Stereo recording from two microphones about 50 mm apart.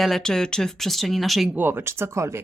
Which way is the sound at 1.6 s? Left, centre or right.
Right.